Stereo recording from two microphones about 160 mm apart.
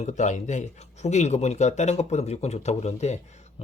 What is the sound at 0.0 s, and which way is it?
Speech, 50° left (ahead or behind).